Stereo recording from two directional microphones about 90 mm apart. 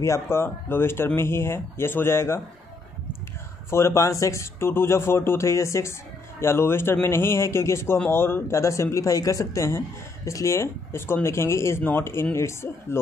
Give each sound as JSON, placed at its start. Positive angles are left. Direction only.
{"t": 0.0, "sound": "speech", "side_deg": 30}
{"t": 3.7, "sound": "speech", "side_deg": 35}